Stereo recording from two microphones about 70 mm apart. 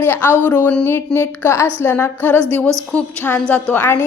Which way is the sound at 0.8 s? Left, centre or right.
Left.